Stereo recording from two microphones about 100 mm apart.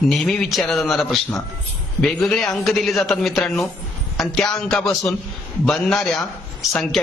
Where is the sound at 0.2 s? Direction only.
5° left (ahead or behind).